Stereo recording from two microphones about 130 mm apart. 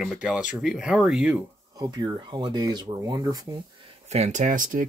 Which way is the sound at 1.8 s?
30° right (ahead or behind).